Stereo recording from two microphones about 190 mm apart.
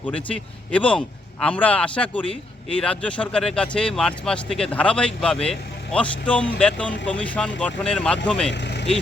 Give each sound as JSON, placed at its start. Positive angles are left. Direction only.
{"t": 0.0, "sound": "a man's voice", "side_deg": 5}
{"t": 8.5, "sound": "vehicle", "side_deg": 65}